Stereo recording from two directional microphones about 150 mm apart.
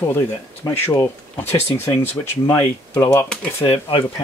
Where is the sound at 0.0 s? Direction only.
15° left (ahead or behind).